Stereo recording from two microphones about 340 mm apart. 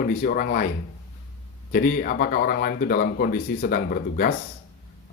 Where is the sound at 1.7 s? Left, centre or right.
Left.